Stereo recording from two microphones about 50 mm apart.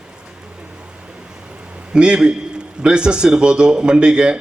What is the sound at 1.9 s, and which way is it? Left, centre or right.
A man's voice, centre.